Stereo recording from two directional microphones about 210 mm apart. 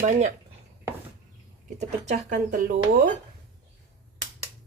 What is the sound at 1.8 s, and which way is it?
Speech, 35° right (ahead or behind).